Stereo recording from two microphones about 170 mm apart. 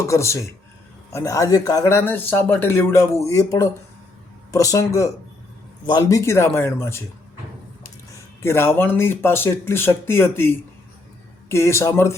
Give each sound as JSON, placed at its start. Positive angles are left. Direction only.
{"t": 0.0, "sound": "speech", "side_deg": 15}
{"t": 8.4, "sound": "speech", "side_deg": 15}